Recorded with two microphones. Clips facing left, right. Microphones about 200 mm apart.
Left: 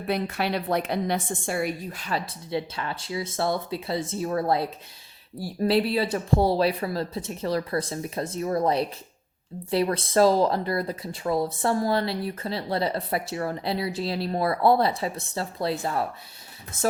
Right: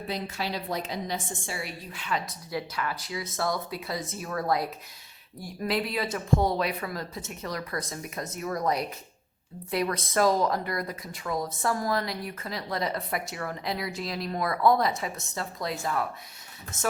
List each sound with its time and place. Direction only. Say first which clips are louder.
0.1 s a woman's voice: left 7 dB; 60° left (ahead or behind); by 2.2 s 40° left (ahead or behind)
2.5 s speech: left 3 dB; 25° left (ahead or behind)